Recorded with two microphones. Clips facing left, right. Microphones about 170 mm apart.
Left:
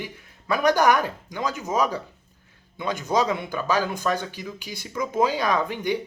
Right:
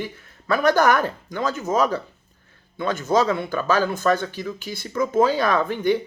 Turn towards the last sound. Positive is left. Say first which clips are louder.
# right 4 dB
turn(degrees=15)  # may be behind; listen again after turning